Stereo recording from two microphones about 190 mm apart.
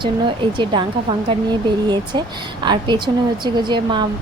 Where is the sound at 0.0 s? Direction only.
25° right (ahead or behind).